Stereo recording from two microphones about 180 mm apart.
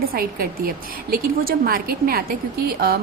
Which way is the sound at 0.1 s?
55° right (ahead or behind).